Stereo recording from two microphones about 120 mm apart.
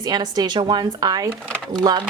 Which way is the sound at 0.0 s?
35° right (ahead or behind).